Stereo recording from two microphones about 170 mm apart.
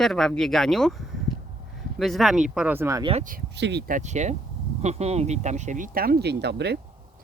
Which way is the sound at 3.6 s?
85° right.